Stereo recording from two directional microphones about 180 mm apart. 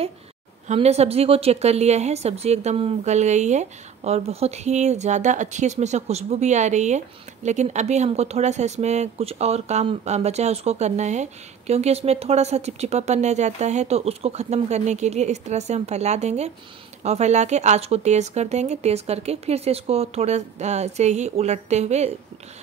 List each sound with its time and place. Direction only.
0.7 s speech: 35° right (ahead or behind)